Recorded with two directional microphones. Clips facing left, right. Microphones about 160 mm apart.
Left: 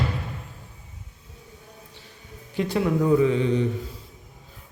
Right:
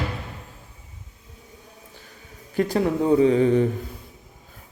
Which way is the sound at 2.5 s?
45° right (ahead or behind).